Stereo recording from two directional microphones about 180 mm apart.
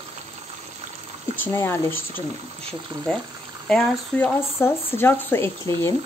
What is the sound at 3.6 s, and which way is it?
Speech, 5° left (ahead or behind).